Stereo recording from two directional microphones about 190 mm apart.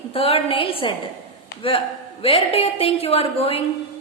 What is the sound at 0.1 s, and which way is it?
A woman's voice, 30° left (ahead or behind).